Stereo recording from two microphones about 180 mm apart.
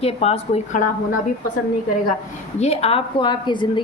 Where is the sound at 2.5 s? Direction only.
35° left (ahead or behind).